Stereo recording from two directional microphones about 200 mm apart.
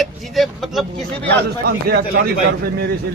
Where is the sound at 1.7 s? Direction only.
55° right (ahead or behind).